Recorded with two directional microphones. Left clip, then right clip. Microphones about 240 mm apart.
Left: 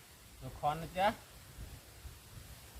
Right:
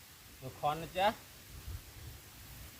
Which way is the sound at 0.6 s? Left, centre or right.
Centre.